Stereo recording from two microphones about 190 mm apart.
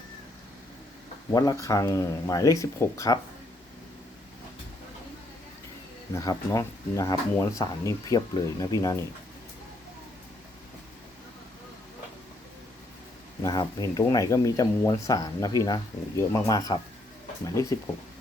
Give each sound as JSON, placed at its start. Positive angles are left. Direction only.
{"t": 1.3, "sound": "speech", "side_deg": 20}
{"t": 6.1, "sound": "speech", "side_deg": 15}
{"t": 13.4, "sound": "speech", "side_deg": 20}